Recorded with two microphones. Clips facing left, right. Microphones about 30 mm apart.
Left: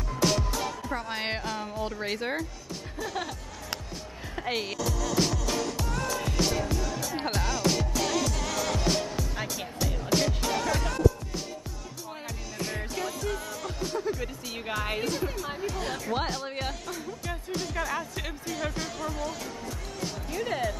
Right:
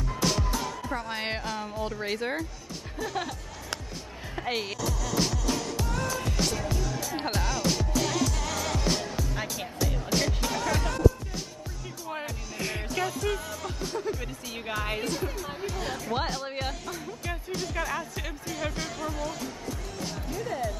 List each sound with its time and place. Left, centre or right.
0.2 s music: centre
0.8 s speech: centre
4.4 s music: centre
12.9 s music: centre
13.6 s speech: centre
20.4 s speech: left